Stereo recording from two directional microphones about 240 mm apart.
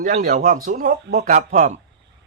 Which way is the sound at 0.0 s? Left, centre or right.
Right.